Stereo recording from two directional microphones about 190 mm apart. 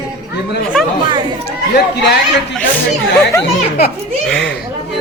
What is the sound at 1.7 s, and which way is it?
Speech, 65° left (ahead or behind).